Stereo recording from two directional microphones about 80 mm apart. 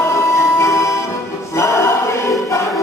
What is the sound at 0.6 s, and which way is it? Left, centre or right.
Music, left.